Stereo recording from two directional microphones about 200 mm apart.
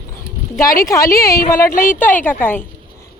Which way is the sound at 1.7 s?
45° left (ahead or behind).